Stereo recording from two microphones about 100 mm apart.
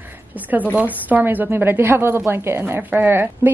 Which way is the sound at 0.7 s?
15° right (ahead or behind).